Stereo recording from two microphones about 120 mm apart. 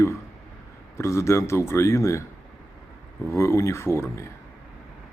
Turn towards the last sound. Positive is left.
turn(degrees=25)  # may be behind; listen again after turning